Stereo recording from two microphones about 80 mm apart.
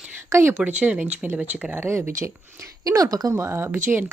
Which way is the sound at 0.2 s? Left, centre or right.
Right.